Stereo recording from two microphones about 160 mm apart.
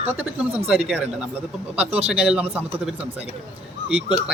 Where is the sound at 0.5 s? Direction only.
5° right (ahead or behind).